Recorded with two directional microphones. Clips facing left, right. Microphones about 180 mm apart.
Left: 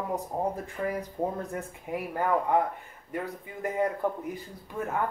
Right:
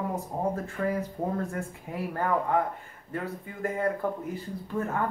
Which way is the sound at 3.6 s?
20° left (ahead or behind).